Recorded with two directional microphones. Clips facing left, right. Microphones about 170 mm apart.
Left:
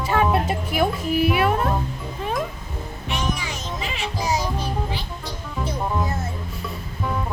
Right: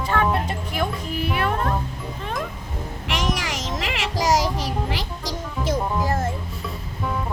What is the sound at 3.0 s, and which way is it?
Music, 90° right.